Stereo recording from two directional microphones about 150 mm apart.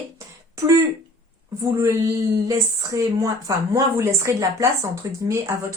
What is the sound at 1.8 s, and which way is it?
A woman's voice, 20° right (ahead or behind).